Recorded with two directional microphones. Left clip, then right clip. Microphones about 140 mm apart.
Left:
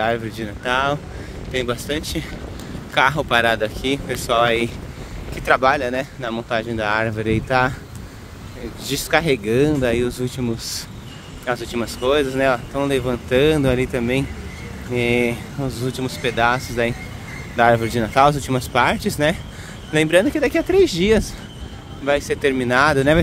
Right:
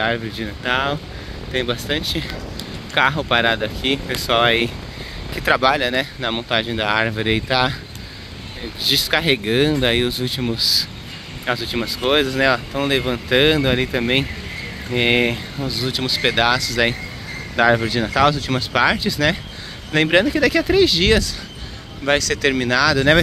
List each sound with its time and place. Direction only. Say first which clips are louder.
0.0 s speech: even; 45° left (ahead or behind)
2.9 s speech: even; 40° left (ahead or behind)
5.5 s speech: even; 25° left (ahead or behind)
8.7 s speech: right 2 dB; 30° left (ahead or behind)